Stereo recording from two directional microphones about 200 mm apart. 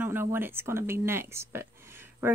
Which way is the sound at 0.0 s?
10° right (ahead or behind).